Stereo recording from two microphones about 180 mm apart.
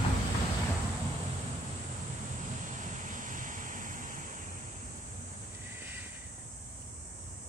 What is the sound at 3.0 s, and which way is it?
Waves, 45° right (ahead or behind).